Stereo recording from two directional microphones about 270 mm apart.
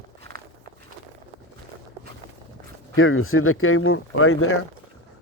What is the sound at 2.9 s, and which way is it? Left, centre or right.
Speech, left.